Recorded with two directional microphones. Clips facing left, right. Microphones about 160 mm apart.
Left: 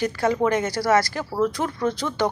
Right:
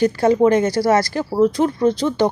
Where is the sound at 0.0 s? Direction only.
30° right (ahead or behind).